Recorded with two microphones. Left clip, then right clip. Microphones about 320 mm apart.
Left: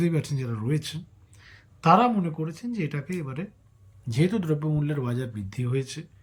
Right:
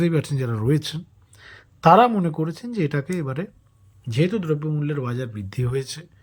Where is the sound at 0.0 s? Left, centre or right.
Centre.